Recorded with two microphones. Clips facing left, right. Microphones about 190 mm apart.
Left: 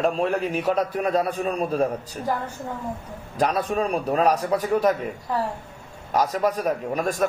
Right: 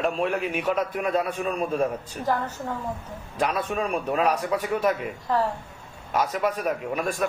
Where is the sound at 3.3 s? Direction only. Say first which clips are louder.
Left 3 dB; 35° left (ahead or behind).